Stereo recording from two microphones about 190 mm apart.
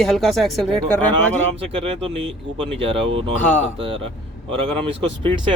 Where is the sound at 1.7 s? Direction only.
30° right (ahead or behind).